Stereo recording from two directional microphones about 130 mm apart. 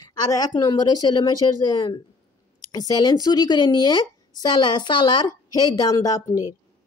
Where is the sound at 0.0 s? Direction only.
30° left (ahead or behind).